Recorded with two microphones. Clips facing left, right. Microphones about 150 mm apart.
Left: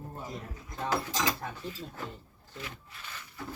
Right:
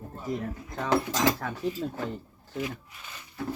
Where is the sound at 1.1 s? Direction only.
85° right.